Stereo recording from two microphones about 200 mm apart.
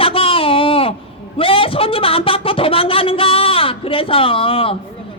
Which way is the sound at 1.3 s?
25° left (ahead or behind).